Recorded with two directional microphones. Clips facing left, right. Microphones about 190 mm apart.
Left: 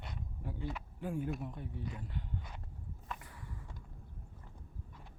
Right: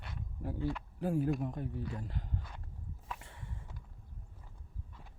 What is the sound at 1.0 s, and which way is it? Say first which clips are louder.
Speech: right 6 dB; 40° right (ahead or behind).